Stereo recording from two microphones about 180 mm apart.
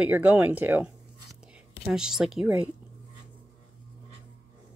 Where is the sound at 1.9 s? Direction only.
5° right (ahead or behind).